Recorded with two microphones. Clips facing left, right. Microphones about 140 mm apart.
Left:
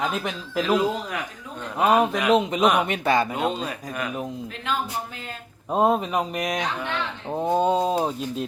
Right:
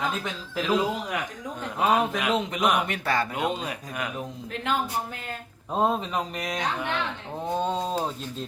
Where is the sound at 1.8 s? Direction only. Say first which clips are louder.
Left 4 dB; 10° left (ahead or behind).